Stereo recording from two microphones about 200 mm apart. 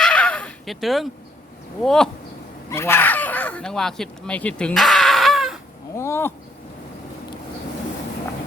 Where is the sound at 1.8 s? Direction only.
5° left (ahead or behind).